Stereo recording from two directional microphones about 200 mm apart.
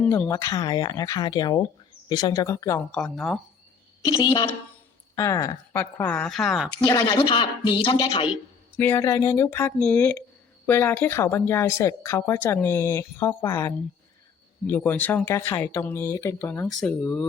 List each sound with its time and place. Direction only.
0.0 s speech: 10° left (ahead or behind)
2.9 s speech: centre (ahead or behind)
4.0 s speech: 20° left (ahead or behind); by 6.7 s centre (ahead or behind)
6.8 s speech: 20° left (ahead or behind)
8.8 s speech: 10° left (ahead or behind)